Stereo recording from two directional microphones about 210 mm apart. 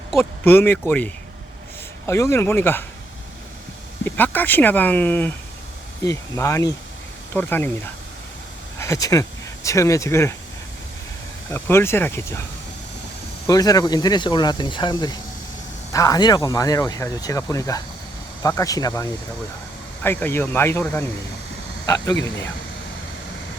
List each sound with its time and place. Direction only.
0.2 s speech: 10° left (ahead or behind)
4.0 s speech: 10° left (ahead or behind)
8.8 s speech: 15° left (ahead or behind)
11.5 s speech: 10° left (ahead or behind)
13.5 s speech: 15° left (ahead or behind)